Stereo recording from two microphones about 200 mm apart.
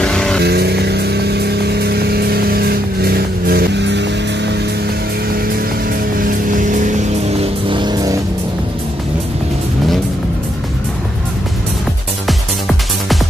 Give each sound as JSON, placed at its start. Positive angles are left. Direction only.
{"t": 0.0, "sound": "vehicle", "side_deg": 5}
{"t": 0.4, "sound": "vehicle", "side_deg": -55}
{"t": 6.1, "sound": "vehicle", "side_deg": -45}
{"t": 7.7, "sound": "vehicle", "side_deg": -20}
{"t": 12.3, "sound": "music", "side_deg": 0}